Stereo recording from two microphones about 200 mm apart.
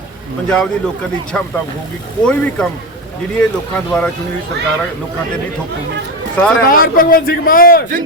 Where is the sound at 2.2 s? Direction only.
5° left (ahead or behind).